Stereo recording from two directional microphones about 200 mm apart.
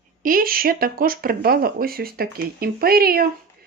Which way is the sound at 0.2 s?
45° right (ahead or behind).